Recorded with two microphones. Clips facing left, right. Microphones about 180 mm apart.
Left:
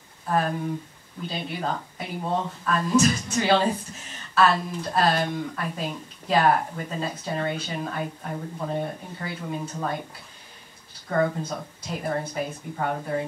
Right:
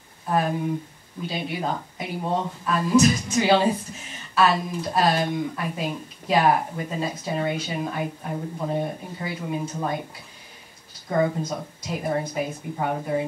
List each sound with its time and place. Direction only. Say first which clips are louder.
0.3 s speech: right 2 dB; 10° right (ahead or behind)
11.1 s speech: right 1 dB; 10° right (ahead or behind)